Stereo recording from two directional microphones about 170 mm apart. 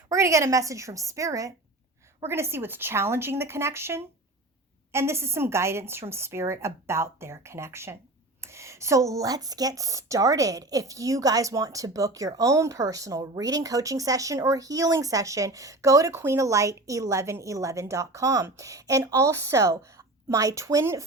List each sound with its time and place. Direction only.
0.1 s a woman's voice: 20° right (ahead or behind)